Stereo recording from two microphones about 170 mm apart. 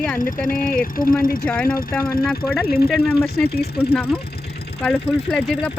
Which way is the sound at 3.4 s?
70° left (ahead or behind).